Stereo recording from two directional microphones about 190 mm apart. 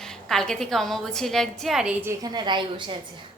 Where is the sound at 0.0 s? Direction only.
Centre (ahead or behind).